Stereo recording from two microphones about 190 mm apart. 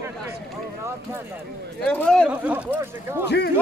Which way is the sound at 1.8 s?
5° left (ahead or behind).